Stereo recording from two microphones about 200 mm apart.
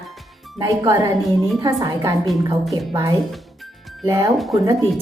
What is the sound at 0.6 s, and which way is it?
A woman's voice, 15° right (ahead or behind).